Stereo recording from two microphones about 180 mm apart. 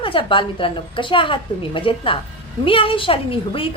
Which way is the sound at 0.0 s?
30° left (ahead or behind).